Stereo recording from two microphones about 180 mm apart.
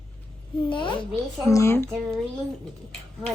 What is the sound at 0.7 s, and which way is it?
Speech, 30° left (ahead or behind).